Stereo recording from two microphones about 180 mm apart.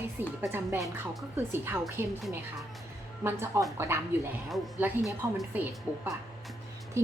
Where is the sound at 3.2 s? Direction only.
15° right (ahead or behind).